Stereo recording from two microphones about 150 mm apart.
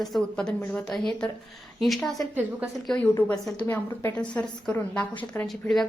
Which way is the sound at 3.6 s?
15° left (ahead or behind).